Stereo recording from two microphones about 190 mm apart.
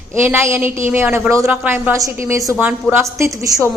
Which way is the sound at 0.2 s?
10° right (ahead or behind).